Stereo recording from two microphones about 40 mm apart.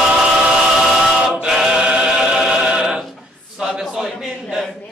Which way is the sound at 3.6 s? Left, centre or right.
Centre.